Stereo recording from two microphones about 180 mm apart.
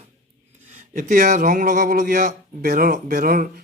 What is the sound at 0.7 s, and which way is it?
Speech, 40° right (ahead or behind).